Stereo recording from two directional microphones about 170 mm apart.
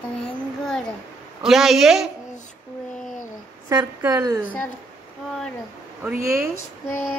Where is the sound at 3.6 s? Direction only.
20° right (ahead or behind).